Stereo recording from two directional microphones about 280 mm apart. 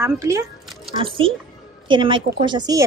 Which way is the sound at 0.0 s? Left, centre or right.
Centre.